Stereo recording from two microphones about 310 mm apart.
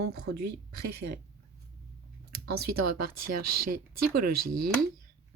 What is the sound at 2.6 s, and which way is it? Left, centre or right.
Speech, right.